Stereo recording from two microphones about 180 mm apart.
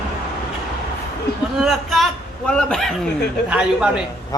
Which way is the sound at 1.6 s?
Centre (ahead or behind).